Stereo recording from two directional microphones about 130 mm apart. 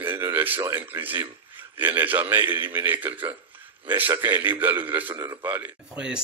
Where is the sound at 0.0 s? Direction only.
15° right (ahead or behind).